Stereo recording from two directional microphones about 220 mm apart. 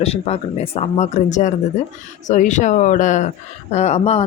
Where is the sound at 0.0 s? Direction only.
30° left (ahead or behind).